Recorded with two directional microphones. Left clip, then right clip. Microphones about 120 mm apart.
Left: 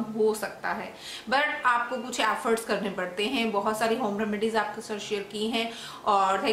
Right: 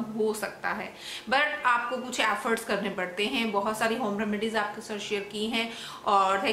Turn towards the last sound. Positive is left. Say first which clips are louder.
# even
turn(degrees=0)  # may be behind; listen again after turning